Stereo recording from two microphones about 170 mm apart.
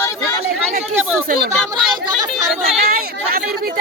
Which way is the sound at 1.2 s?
60° right (ahead or behind).